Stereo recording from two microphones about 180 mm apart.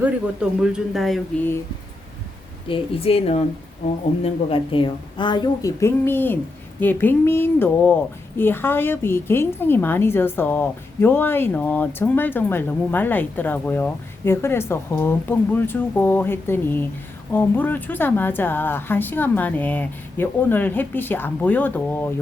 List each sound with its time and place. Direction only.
0.6 s speech: centre (ahead or behind)
2.6 s a woman's voice: 30° left (ahead or behind); by 22.1 s 10° left (ahead or behind)